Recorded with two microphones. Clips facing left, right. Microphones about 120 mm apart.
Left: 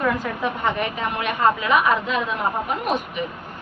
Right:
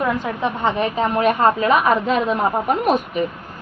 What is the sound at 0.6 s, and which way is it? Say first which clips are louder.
A woman's voice: right 7 dB; 35° right (ahead or behind).